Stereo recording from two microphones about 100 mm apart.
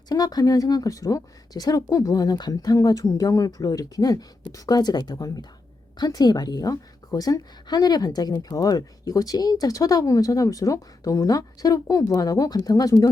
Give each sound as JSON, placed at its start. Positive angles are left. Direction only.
{"t": 0.1, "sound": "a woman's voice", "side_deg": 40}